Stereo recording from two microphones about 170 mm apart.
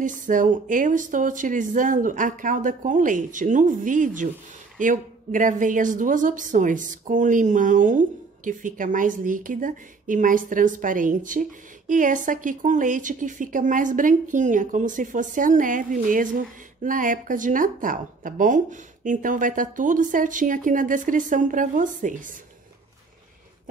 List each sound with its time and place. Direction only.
0.0 s speech: 50° right (ahead or behind)